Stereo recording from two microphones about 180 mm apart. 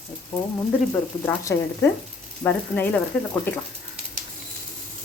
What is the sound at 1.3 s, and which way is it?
Speech, 15° left (ahead or behind).